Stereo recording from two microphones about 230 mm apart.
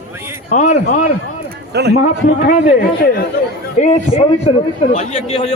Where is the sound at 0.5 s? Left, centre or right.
Left.